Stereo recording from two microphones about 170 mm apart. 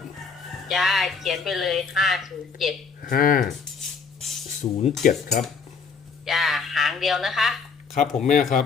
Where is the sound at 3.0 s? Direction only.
55° left (ahead or behind).